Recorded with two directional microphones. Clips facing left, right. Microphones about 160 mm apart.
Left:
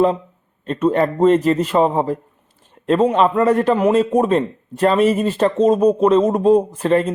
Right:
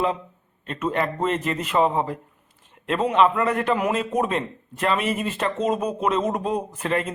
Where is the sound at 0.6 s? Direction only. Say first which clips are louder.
Left 8 dB; 35° left (ahead or behind).